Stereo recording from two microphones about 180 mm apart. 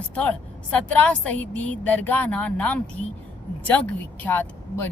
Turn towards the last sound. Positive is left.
turn(degrees=10)  # may be behind; listen again after turning